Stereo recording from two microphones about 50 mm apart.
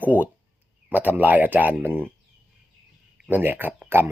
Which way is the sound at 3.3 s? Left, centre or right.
Right.